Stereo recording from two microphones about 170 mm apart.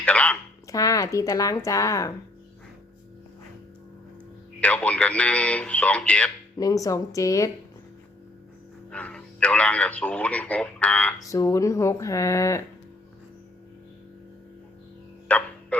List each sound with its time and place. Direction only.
0.0 s speech: 10° left (ahead or behind)
0.7 s speech: 20° left (ahead or behind)
4.6 s speech: 10° left (ahead or behind)
6.6 s speech: 20° left (ahead or behind)
8.9 s speech: 5° left (ahead or behind)
11.2 s speech: 20° left (ahead or behind)
15.3 s speech: 10° left (ahead or behind)